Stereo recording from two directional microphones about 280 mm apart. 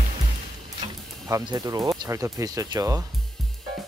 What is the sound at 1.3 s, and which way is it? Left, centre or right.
Speech, centre.